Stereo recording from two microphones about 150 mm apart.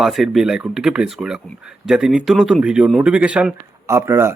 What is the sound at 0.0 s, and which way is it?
Speech, centre (ahead or behind).